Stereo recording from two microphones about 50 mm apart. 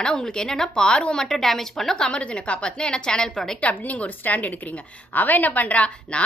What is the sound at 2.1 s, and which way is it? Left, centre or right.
A woman's voice, left.